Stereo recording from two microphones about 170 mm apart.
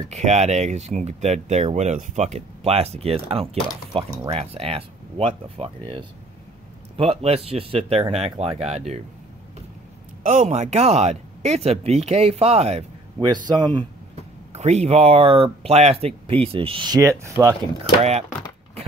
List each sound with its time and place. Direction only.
0.1 s speech: 40° right (ahead or behind)
7.0 s speech: 35° right (ahead or behind)
10.2 s speech: 45° right (ahead or behind); by 13.8 s 25° right (ahead or behind)
14.5 s speech: 40° right (ahead or behind); by 17.6 s 20° right (ahead or behind)